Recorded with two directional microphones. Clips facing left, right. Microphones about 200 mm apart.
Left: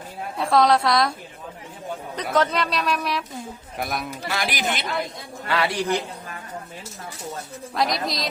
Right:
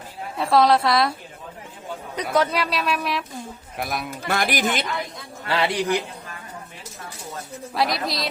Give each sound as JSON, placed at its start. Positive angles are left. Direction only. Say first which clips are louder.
{"t": 0.3, "sound": "speech", "louder": "right 1 dB", "side_deg": 0}
{"t": 2.3, "sound": "speech", "louder": "even", "side_deg": -10}
{"t": 4.3, "sound": "speech", "louder": "right 4 dB", "side_deg": -50}
{"t": 5.5, "sound": "a man's voice", "louder": "right 1 dB", "side_deg": -25}
{"t": 7.7, "sound": "speech", "louder": "even", "side_deg": 0}